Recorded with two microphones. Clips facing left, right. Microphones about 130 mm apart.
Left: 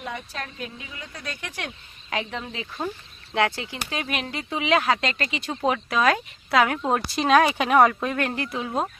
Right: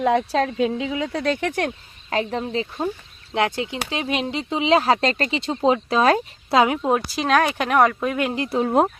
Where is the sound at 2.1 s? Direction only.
35° right (ahead or behind).